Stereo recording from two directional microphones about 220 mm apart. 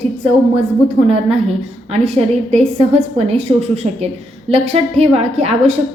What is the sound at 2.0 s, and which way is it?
A woman's voice, 30° right (ahead or behind).